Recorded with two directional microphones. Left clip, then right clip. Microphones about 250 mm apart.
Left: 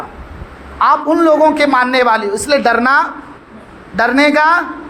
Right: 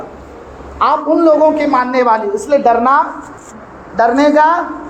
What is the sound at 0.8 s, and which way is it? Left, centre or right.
Speech, left.